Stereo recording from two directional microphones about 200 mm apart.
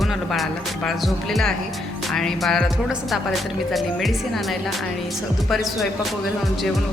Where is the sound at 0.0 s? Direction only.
Centre (ahead or behind).